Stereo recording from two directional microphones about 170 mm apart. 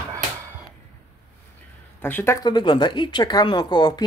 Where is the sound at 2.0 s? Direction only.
10° left (ahead or behind).